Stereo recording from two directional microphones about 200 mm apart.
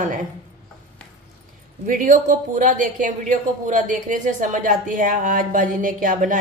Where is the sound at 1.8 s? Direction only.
40° right (ahead or behind).